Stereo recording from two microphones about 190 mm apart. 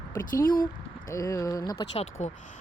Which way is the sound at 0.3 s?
45° left (ahead or behind).